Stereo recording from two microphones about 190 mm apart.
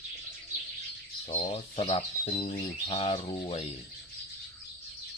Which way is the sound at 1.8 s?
30° left (ahead or behind).